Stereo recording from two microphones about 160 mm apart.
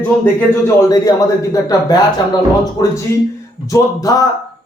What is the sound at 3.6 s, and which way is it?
Speech, 20° left (ahead or behind).